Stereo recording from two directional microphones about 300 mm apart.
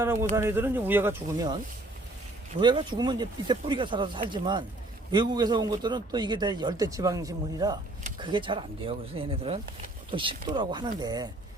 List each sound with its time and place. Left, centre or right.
0.0 s a man's voice: centre
2.6 s a man's voice: centre